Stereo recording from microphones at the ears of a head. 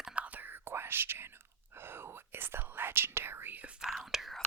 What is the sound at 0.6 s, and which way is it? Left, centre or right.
Speech, right.